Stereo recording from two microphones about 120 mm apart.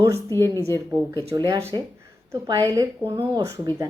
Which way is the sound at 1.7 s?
35° right (ahead or behind).